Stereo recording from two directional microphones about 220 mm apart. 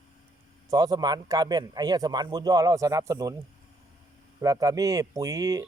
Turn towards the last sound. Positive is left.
turn(degrees=-15)  # may be behind; listen again after turning